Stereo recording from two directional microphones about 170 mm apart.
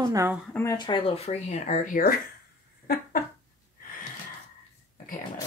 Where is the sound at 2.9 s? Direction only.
60° left (ahead or behind).